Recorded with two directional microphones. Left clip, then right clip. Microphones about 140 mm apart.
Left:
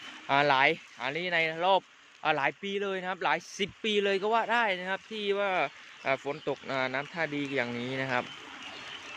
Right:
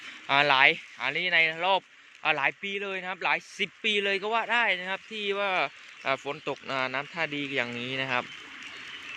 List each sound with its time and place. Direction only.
0.3 s speech: 15° left (ahead or behind)